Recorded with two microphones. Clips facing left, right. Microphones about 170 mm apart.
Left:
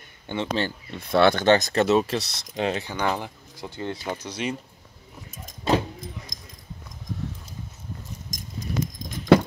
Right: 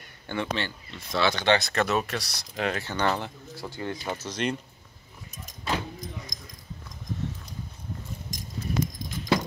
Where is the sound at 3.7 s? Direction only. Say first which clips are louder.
Left 2 dB; 25° left (ahead or behind).